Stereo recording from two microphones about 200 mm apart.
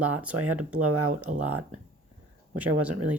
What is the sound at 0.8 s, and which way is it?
Speech, 90° right.